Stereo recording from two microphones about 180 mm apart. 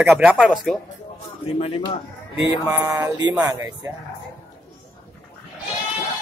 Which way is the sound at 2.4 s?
10° right (ahead or behind).